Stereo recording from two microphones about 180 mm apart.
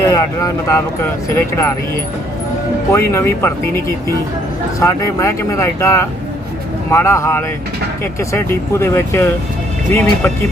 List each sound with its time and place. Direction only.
0.1 s speech: 20° left (ahead or behind)
2.9 s speech: 15° left (ahead or behind)